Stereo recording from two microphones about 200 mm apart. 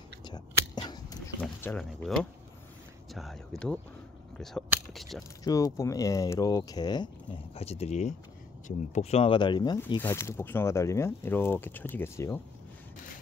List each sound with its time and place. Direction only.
0.2 s biting: 20° left (ahead or behind)
1.4 s speech: 5° left (ahead or behind)
5.4 s speech: 15° left (ahead or behind)
7.5 s speech: 30° left (ahead or behind); by 12.4 s 15° left (ahead or behind)